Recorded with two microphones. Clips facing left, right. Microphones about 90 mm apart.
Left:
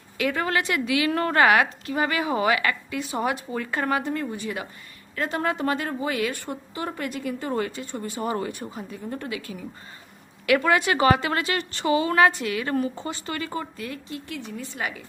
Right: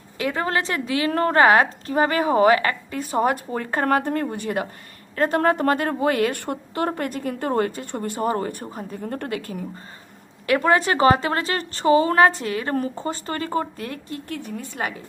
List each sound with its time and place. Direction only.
0.2 s a woman's voice: 30° right (ahead or behind); by 9.6 s 50° right (ahead or behind)
10.4 s a woman's voice: 35° right (ahead or behind)